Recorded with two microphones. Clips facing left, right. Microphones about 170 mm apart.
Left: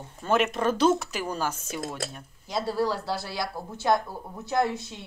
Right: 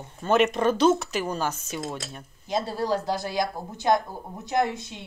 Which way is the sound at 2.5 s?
20° right (ahead or behind).